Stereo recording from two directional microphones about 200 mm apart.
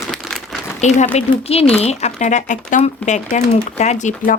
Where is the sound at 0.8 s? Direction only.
35° left (ahead or behind).